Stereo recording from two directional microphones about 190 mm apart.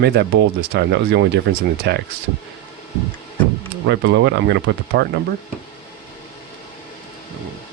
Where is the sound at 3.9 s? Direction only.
65° right (ahead or behind).